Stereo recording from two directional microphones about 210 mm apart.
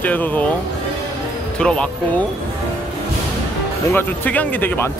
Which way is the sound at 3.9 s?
10° left (ahead or behind).